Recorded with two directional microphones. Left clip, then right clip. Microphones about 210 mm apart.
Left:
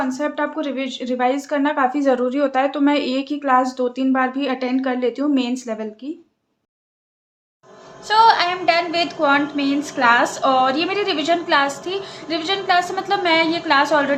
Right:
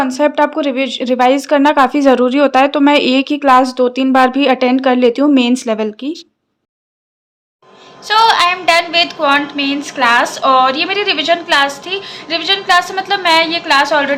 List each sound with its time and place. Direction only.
0.0 s speech: 45° right (ahead or behind)
8.0 s a woman's voice: 5° left (ahead or behind)